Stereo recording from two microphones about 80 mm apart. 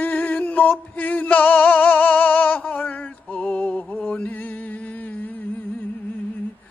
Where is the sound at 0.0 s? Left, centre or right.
Centre.